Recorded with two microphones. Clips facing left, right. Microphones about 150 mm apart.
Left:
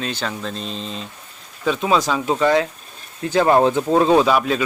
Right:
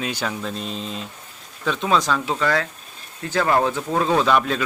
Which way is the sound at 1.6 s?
5° left (ahead or behind).